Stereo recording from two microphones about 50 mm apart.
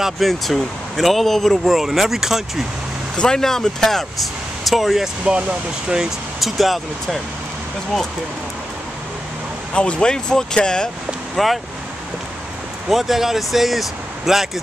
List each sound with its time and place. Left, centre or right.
0.0 s speech: centre
3.2 s speech: centre
9.8 s speech: centre
11.3 s speech: centre
12.9 s speech: centre